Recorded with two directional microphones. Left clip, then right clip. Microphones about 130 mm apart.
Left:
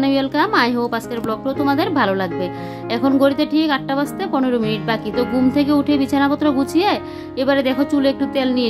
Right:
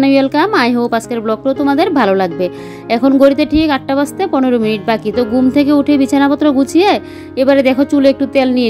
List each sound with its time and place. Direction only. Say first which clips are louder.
0.0 s speech: right 6 dB; 45° right (ahead or behind)